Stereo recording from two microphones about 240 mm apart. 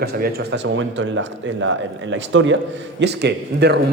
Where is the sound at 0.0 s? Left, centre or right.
Right.